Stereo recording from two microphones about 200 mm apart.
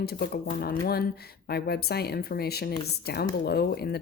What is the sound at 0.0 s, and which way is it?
Speech, 55° left (ahead or behind).